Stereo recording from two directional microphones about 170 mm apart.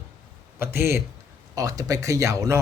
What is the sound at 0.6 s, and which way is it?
Speech, 15° right (ahead or behind).